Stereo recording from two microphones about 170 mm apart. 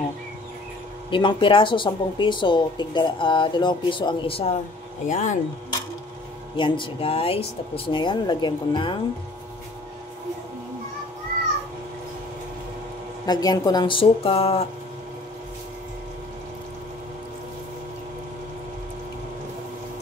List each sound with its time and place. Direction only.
1.1 s a woman's voice: 30° left (ahead or behind)
5.0 s speech: 45° left (ahead or behind)
6.5 s a woman's voice: 30° left (ahead or behind)
13.2 s speech: 20° left (ahead or behind)